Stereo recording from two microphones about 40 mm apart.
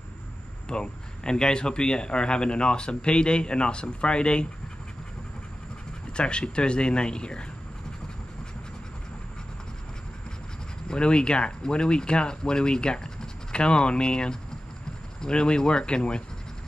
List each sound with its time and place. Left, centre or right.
0.7 s a man's voice: left
6.1 s a man's voice: left
10.9 s a man's voice: left